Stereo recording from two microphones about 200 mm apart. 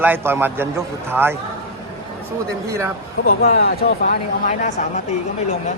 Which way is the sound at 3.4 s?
45° left (ahead or behind).